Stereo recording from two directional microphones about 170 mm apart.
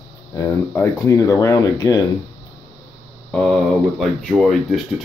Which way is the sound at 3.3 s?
5° left (ahead or behind).